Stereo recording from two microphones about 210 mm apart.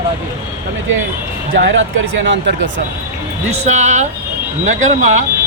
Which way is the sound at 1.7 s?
65° right (ahead or behind).